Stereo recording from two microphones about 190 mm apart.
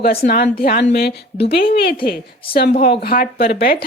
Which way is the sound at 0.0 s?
55° left (ahead or behind).